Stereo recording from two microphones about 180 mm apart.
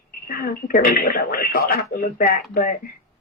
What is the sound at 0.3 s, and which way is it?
Speech, 55° left (ahead or behind).